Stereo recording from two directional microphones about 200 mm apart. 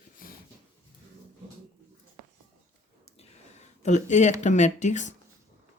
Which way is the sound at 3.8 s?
35° left (ahead or behind).